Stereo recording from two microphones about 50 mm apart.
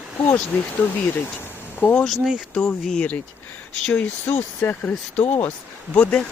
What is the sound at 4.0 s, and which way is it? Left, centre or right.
Speech, left.